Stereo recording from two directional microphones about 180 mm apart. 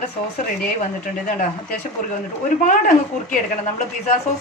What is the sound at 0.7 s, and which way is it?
A woman's voice, 45° left (ahead or behind).